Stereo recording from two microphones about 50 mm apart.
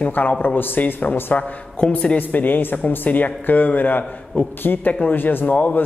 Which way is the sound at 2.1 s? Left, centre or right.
Left.